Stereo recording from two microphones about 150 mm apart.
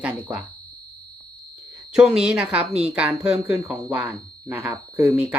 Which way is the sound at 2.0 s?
5° right (ahead or behind).